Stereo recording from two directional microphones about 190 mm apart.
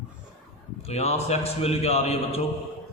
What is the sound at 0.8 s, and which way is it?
A man's voice, 35° left (ahead or behind).